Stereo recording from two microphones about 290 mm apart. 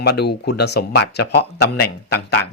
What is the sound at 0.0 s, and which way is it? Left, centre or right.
Speech, left.